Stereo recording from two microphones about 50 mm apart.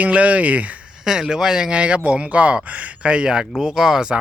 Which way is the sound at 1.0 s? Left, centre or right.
Centre.